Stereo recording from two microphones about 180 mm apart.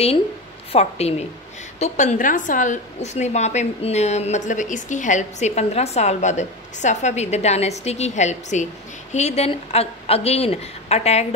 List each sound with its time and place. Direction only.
0.7 s a woman's voice: 35° left (ahead or behind)